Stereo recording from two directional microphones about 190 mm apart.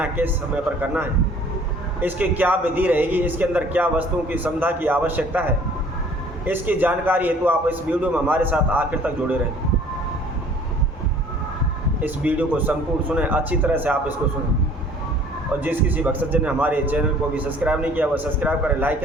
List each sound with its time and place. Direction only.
0.0 s a man's voice: 10° right (ahead or behind)
12.0 s a man's voice: 10° right (ahead or behind)
15.6 s a man's voice: 10° right (ahead or behind)